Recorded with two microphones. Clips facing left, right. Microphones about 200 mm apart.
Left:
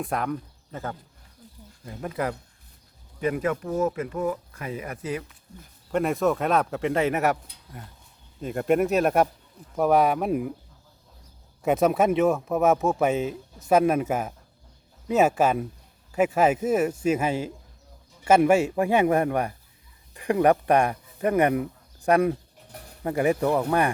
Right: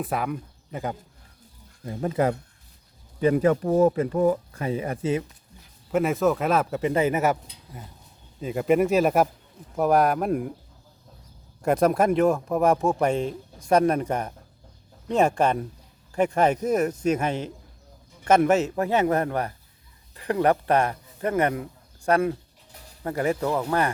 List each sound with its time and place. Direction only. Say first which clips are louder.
0.0 s speech: even; 5° right (ahead or behind)
0.7 s speech: right 3 dB; 15° right (ahead or behind)
1.8 s speech: right 5 dB; 25° right (ahead or behind)
5.9 s speech: right 1 dB; centre (ahead or behind)
8.4 s speech: right 1 dB; centre (ahead or behind)
11.6 s speech: even; centre (ahead or behind)